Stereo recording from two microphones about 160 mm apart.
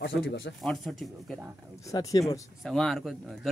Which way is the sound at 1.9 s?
20° left (ahead or behind).